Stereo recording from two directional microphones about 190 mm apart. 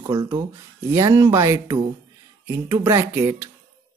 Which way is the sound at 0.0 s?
20° right (ahead or behind).